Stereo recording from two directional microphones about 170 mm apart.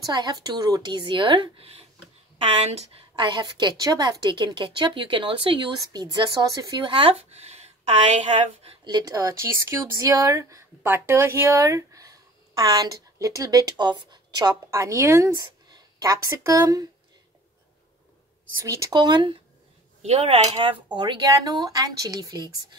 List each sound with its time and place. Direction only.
0.0 s a woman's voice: 25° right (ahead or behind)
8.8 s a woman's voice: 20° right (ahead or behind)
18.6 s a woman's voice: 20° right (ahead or behind)
20.0 s a woman's voice: 40° right (ahead or behind); by 22.8 s 20° right (ahead or behind)